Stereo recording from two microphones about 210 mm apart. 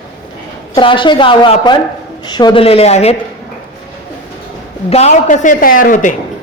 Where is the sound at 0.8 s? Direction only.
25° left (ahead or behind).